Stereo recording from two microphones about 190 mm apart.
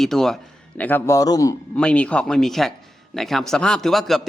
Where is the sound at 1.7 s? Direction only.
5° left (ahead or behind).